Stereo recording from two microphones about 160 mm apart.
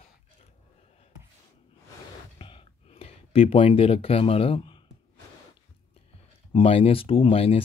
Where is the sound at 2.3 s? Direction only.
35° left (ahead or behind).